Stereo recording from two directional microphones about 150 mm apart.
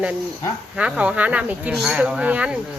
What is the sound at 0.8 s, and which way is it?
Speech, 10° right (ahead or behind).